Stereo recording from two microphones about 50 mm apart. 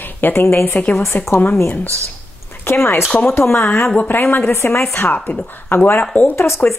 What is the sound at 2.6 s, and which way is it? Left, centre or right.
A woman's voice, left.